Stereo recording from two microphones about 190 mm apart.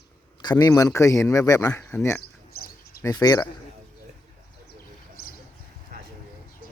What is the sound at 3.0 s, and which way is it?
Speech, 20° left (ahead or behind).